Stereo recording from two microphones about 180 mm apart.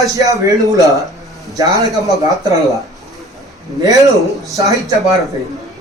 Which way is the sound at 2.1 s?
20° right (ahead or behind).